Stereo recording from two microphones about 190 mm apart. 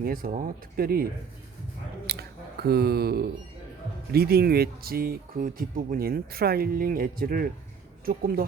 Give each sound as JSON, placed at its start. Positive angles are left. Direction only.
{"t": 0.0, "sound": "speech", "side_deg": -50}
{"t": 2.0, "sound": "speech", "side_deg": -55}